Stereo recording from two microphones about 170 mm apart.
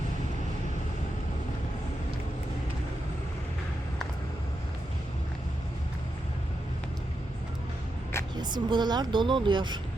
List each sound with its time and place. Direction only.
8.4 s speech: 25° right (ahead or behind)